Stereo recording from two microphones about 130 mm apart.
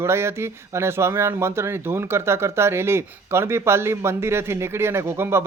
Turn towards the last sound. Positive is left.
turn(degrees=-20)  # may be behind; listen again after turning